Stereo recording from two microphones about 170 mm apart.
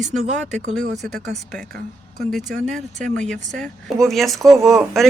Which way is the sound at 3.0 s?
5° left (ahead or behind).